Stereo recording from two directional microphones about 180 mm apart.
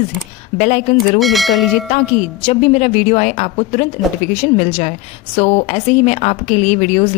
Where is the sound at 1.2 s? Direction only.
Centre (ahead or behind).